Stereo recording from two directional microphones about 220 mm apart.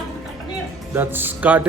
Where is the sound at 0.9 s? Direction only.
10° right (ahead or behind).